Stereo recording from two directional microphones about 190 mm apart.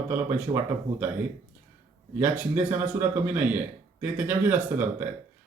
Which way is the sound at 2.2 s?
10° right (ahead or behind).